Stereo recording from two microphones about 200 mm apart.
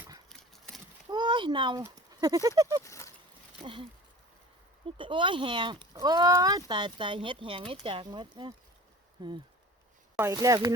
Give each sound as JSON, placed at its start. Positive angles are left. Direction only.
{"t": 0.3, "sound": "engine", "side_deg": 0}
{"t": 1.1, "sound": "speech", "side_deg": -20}
{"t": 2.8, "sound": "a sound", "side_deg": 15}
{"t": 3.6, "sound": "speech", "side_deg": -25}
{"t": 4.9, "sound": "speech", "side_deg": -25}